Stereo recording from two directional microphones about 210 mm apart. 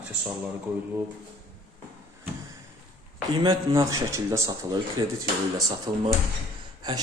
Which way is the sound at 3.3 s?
20° right (ahead or behind).